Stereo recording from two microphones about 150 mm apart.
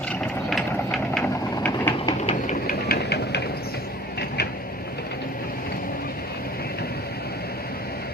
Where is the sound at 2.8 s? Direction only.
90° left.